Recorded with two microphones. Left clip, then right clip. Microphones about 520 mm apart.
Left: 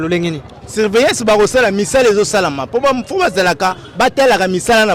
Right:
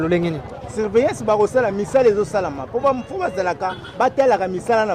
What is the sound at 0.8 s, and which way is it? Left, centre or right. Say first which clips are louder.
Speech: left 6 dB; left.